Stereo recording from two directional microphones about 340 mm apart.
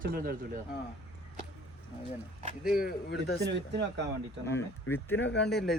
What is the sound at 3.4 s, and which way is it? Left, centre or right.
Speech, right.